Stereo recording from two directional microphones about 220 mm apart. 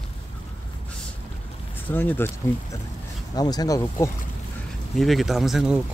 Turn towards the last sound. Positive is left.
turn(degrees=-5)  # may be behind; listen again after turning